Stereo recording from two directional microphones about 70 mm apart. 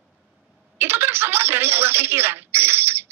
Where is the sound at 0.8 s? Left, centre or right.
Right.